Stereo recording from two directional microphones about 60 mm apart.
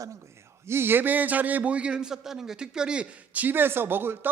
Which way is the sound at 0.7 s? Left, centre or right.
Right.